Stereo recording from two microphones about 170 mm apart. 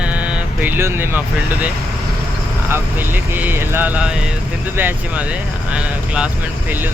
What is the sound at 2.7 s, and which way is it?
Speech, 10° right (ahead or behind).